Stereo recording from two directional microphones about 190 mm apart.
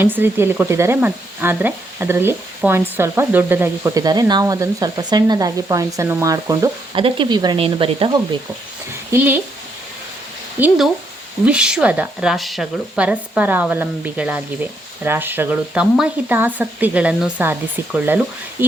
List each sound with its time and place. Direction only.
0.0 s speech: 10° right (ahead or behind); by 8.2 s 25° right (ahead or behind)
9.1 s speech: 10° right (ahead or behind)
10.6 s speech: 10° right (ahead or behind)